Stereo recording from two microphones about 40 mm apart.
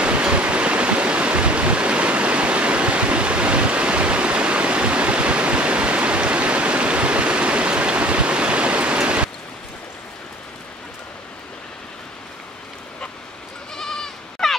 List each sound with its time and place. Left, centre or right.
0.0 s stream: right
13.7 s bleat: centre